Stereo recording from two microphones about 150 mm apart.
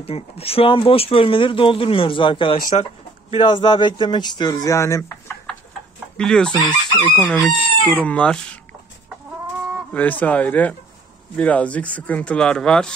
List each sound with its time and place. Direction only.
0.0 s speech: 40° left (ahead or behind)
2.6 s bird: 50° left (ahead or behind)
3.3 s speech: 30° left (ahead or behind)
6.1 s speech: 5° left (ahead or behind)
9.9 s speech: 10° left (ahead or behind)